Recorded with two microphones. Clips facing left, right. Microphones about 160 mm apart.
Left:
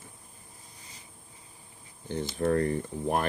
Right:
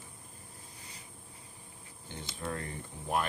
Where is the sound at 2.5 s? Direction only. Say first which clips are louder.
Left 13 dB; 45° left (ahead or behind).